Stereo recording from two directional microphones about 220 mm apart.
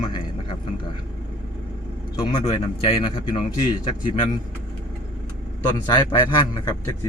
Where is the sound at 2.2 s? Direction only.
20° left (ahead or behind).